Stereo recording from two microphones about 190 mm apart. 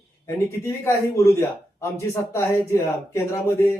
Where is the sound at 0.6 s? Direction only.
15° left (ahead or behind).